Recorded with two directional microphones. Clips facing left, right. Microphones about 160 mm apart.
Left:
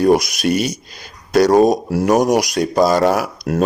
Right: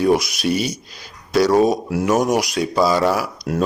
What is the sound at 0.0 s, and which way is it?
Speech, 45° left (ahead or behind).